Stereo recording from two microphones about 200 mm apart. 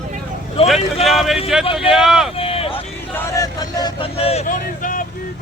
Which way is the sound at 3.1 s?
15° left (ahead or behind).